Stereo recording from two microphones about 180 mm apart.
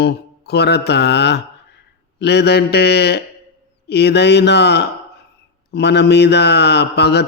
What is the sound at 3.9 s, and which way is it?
Mantra, 65° left (ahead or behind).